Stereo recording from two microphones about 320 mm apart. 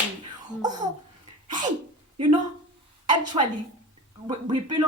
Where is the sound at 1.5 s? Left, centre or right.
Centre.